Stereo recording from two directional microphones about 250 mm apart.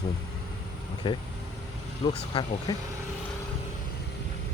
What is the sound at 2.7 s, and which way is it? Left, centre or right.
Speech, centre.